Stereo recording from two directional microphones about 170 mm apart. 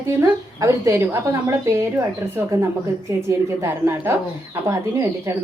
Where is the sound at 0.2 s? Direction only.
15° right (ahead or behind).